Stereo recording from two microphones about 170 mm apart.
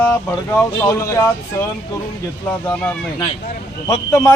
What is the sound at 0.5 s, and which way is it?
Speech, 15° left (ahead or behind).